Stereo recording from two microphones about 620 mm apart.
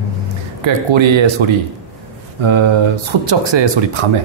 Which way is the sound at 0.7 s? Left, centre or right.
Right.